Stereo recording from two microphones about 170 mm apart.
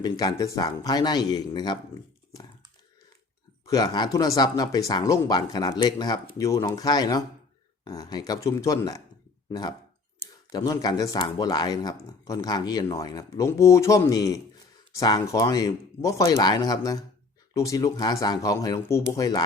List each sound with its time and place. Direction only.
0.0 s speech: 25° left (ahead or behind)
3.7 s speech: 20° left (ahead or behind)